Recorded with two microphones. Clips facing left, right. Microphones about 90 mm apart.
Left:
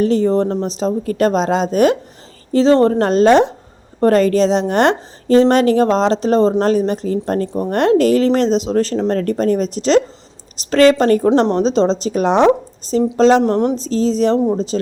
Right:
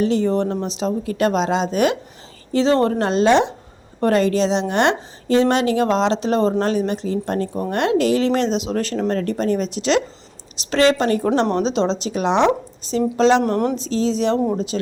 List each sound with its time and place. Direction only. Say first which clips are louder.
0.0 s a woman's voice: left 4 dB; 40° left (ahead or behind)
13.4 s a woman's voice: left 4 dB; 20° left (ahead or behind)
13.7 s a woman's voice: left 4 dB; 40° left (ahead or behind)
14.3 s a woman's voice: left 4 dB; 20° left (ahead or behind)